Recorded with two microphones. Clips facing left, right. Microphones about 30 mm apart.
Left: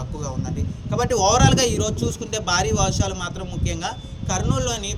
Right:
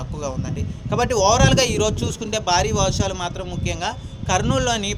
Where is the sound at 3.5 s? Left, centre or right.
Right.